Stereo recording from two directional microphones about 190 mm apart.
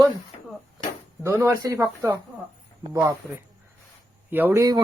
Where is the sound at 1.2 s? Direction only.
15° right (ahead or behind).